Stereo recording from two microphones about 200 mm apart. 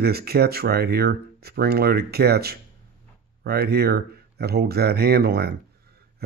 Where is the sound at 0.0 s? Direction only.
50° right (ahead or behind).